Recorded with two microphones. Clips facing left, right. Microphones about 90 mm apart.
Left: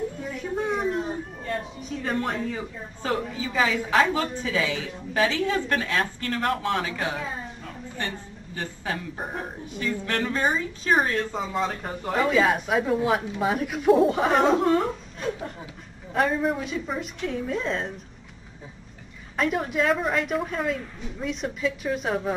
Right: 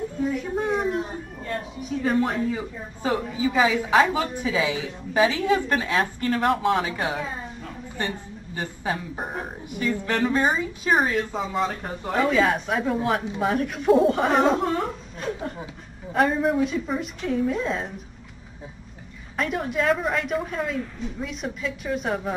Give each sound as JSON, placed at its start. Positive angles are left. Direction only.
{"t": 0.2, "sound": "a sound", "side_deg": 0}
{"t": 1.5, "sound": "speech", "side_deg": -5}
{"t": 8.5, "sound": "speech", "side_deg": -15}
{"t": 19.3, "sound": "speech", "side_deg": 0}